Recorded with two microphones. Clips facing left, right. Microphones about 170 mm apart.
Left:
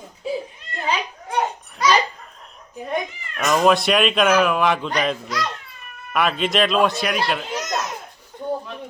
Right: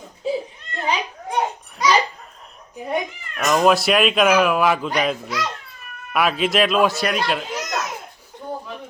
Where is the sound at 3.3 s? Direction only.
Centre (ahead or behind).